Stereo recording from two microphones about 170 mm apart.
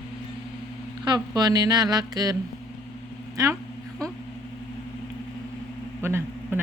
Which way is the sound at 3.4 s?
20° right (ahead or behind).